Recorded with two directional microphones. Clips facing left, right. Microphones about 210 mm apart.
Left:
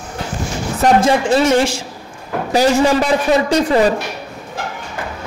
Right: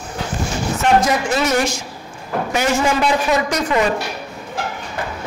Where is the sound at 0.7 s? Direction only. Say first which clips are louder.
Left 4 dB; 30° left (ahead or behind).